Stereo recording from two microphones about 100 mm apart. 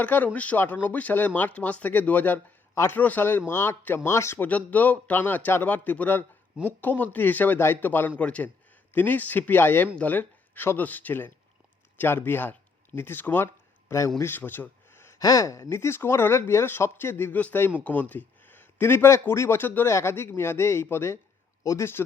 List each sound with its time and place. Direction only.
0.0 s speech: 15° left (ahead or behind)
4.4 s speech: 15° left (ahead or behind)
15.2 s a man's voice: 35° left (ahead or behind)